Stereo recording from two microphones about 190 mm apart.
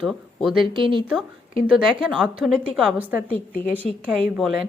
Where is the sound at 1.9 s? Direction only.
5° right (ahead or behind).